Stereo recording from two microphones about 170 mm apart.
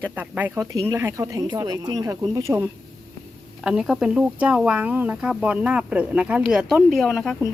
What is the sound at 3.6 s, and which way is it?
Speech, 5° right (ahead or behind).